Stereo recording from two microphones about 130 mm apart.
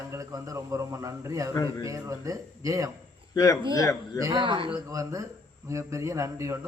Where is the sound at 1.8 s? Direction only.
25° right (ahead or behind).